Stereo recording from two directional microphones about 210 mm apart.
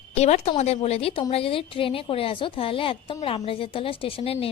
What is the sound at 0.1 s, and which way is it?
A woman's voice, 30° left (ahead or behind).